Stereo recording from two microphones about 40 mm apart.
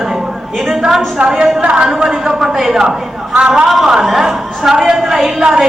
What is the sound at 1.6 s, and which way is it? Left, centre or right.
Speech, right.